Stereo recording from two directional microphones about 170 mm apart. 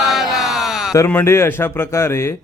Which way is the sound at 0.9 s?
15° left (ahead or behind).